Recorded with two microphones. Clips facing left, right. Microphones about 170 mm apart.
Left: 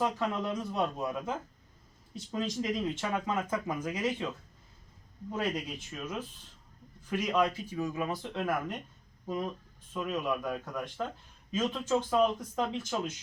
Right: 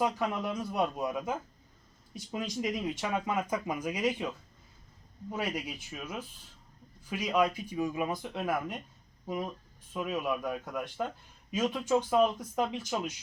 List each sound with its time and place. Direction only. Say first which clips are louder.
0.0 s speech: right 1 dB; 10° right (ahead or behind)
5.3 s speech: left 1 dB; 10° right (ahead or behind)